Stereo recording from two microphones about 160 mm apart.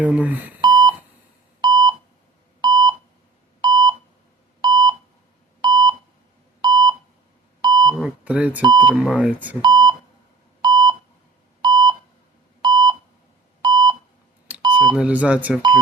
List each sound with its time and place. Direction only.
0.0 s speech: 10° right (ahead or behind)
0.6 s beep: 25° right (ahead or behind)
8.0 s beep: 10° right (ahead or behind)
8.8 s speech: 5° right (ahead or behind)
9.6 s beep: 25° right (ahead or behind)
14.9 s speech: 10° right (ahead or behind)